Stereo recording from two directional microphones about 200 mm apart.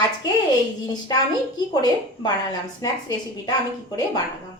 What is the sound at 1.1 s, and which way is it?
Speech, 20° left (ahead or behind).